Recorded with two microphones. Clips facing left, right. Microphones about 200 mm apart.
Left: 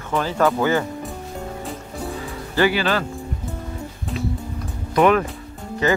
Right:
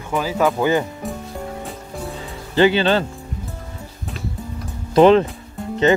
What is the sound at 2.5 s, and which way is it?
Speech, 25° right (ahead or behind).